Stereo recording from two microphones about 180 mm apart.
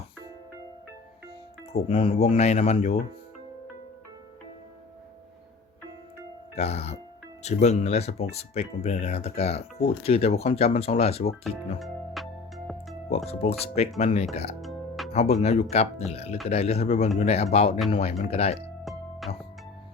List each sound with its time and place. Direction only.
1.7 s speech: 30° left (ahead or behind)
6.6 s speech: 35° left (ahead or behind)
11.8 s music: centre (ahead or behind)
13.1 s speech: 35° left (ahead or behind)
14.6 s music: centre (ahead or behind)
15.1 s speech: 35° left (ahead or behind)